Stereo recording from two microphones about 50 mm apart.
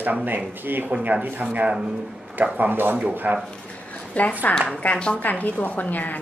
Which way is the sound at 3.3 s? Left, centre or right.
Right.